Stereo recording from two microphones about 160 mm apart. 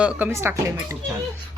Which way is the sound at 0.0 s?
5° right (ahead or behind).